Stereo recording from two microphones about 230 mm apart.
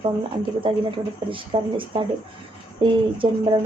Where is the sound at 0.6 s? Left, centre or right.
Right.